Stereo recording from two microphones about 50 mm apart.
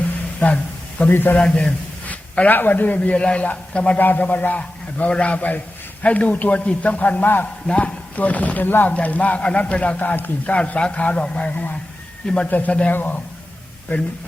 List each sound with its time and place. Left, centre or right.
0.3 s a sound: left
1.1 s a man's voice: left
1.4 s a man's voice: left
3.9 s a man's voice: left
9.0 s a man's voice: left
10.0 s a man's voice: left
10.4 s a man's voice: left
12.2 s speech: centre
12.5 s a man's voice: left
12.9 s a man's voice: left